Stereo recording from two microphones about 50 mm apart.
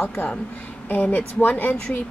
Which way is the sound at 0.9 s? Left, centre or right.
Left.